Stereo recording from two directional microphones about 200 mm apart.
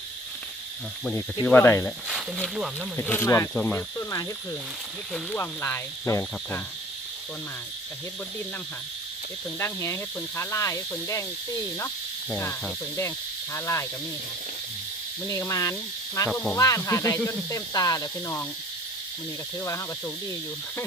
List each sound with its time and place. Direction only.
1.5 s speech: 10° left (ahead or behind)
2.0 s speech: centre (ahead or behind)
9.6 s speech: 10° left (ahead or behind)
13.0 s speech: 15° left (ahead or behind)
15.3 s speech: 15° left (ahead or behind)
19.5 s speech: 15° left (ahead or behind)